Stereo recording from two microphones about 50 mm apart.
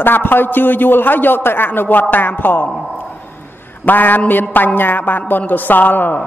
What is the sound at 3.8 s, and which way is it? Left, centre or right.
A man's voice, left.